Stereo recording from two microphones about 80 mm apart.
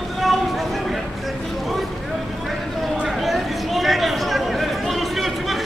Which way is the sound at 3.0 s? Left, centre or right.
Centre.